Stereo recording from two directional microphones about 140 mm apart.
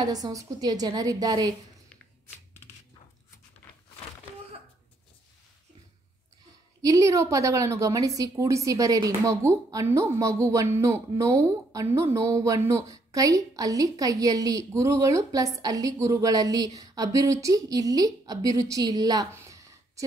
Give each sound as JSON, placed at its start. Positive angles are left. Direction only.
{"t": 0.0, "sound": "a woman's voice", "side_deg": -25}
{"t": 6.8, "sound": "a woman's voice", "side_deg": -25}